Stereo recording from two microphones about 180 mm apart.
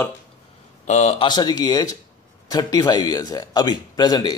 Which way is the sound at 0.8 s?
40° left (ahead or behind).